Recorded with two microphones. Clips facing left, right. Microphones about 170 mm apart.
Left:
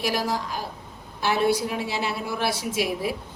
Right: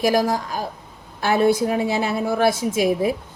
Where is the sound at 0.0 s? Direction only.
45° right (ahead or behind).